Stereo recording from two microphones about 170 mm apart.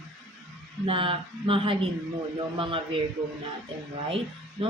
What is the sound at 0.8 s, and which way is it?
Speech, 30° right (ahead or behind).